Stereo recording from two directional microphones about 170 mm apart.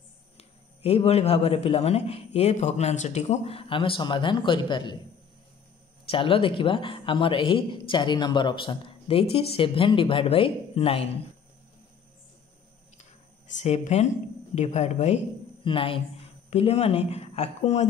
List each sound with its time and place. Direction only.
0.4 s a man's voice: 35° left (ahead or behind)
6.0 s a man's voice: 30° left (ahead or behind)
13.6 s a man's voice: 40° left (ahead or behind)